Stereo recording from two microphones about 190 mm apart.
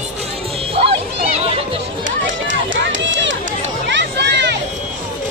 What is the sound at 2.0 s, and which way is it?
Run, 80° right.